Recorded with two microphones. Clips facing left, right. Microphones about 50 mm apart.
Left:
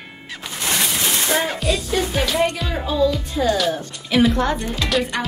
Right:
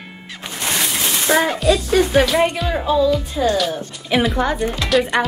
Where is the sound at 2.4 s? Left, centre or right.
Centre.